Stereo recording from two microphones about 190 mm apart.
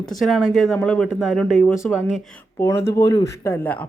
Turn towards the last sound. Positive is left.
turn(degrees=10)  # may be behind; listen again after turning